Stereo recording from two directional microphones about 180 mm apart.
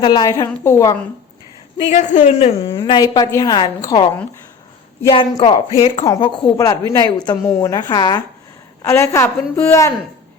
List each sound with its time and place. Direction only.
0.0 s a woman's voice: 25° left (ahead or behind)
1.9 s a woman's voice: 40° left (ahead or behind); by 9.9 s 15° left (ahead or behind)